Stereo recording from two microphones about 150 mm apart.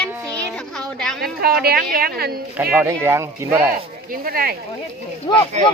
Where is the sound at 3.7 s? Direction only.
75° right (ahead or behind).